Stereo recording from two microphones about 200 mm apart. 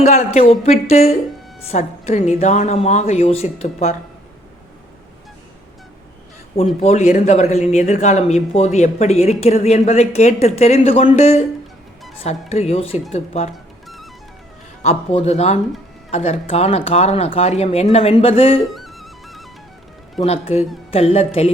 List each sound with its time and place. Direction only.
0.0 s speech: 35° left (ahead or behind)
6.7 s speech: 30° left (ahead or behind)
13.8 s music: centre (ahead or behind)
14.8 s speech: 30° left (ahead or behind)
18.6 s music: centre (ahead or behind)
20.2 s a woman's voice: 30° left (ahead or behind)